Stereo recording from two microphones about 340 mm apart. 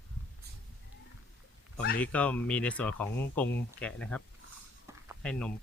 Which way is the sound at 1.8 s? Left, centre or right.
Left.